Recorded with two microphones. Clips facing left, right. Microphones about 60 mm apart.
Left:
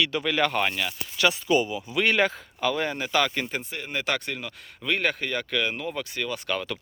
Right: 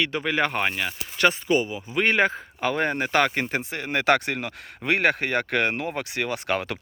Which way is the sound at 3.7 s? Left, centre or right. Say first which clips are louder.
Right 9 dB; right.